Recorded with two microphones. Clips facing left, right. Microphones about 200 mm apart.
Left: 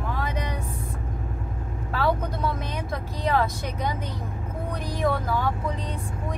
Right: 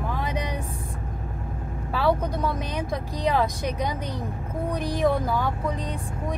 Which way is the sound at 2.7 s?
15° right (ahead or behind).